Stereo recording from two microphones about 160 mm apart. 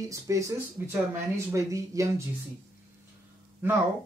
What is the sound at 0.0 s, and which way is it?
Speech, 20° right (ahead or behind).